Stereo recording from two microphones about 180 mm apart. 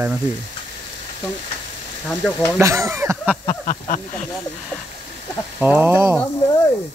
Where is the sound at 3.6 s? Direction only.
45° left (ahead or behind).